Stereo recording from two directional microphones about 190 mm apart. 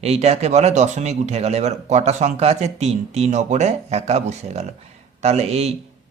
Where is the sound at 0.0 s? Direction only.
35° right (ahead or behind).